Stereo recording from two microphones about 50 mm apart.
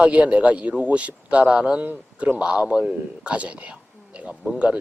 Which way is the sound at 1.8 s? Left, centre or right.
Right.